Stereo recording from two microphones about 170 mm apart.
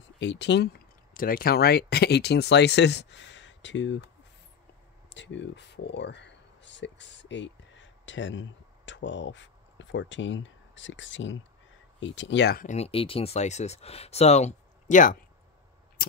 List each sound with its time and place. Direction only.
0.2 s speech: 90° left
5.1 s speech: 90° left
12.6 s speech: 40° left (ahead or behind)
16.0 s a sound: 60° left (ahead or behind)